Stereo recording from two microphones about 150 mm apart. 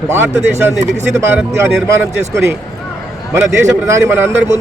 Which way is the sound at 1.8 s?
15° right (ahead or behind).